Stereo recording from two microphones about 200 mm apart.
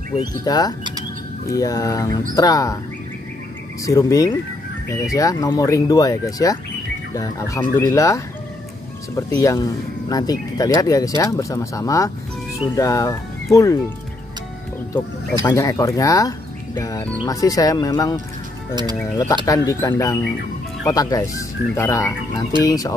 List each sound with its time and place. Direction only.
0.2 s speech: 20° left (ahead or behind)
3.8 s speech: 15° left (ahead or behind)
15.4 s speech: 15° left (ahead or behind)